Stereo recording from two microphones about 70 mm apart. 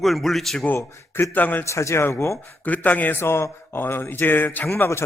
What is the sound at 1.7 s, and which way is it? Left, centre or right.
Speech, left.